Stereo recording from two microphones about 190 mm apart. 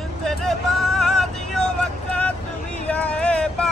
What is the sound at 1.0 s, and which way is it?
Vehicle, centre (ahead or behind).